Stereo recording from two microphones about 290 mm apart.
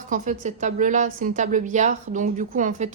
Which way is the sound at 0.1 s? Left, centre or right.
Right.